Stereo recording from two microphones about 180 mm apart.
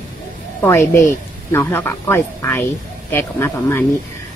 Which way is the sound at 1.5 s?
10° left (ahead or behind).